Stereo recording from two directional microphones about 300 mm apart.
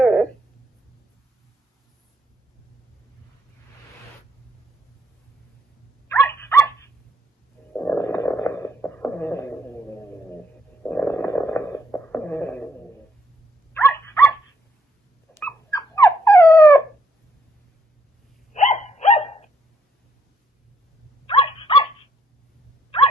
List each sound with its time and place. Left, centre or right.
0.0 s a sound: centre
6.1 s dog: centre
7.7 s a sound: centre
13.7 s dog: centre
15.4 s dog: centre
18.5 s dog: left
21.2 s dog: centre